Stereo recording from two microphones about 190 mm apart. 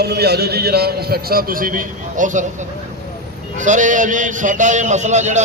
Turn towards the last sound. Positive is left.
turn(degrees=-40)  # may be behind; listen again after turning